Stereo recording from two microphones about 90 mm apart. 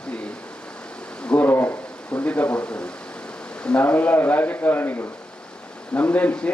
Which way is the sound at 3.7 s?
15° left (ahead or behind).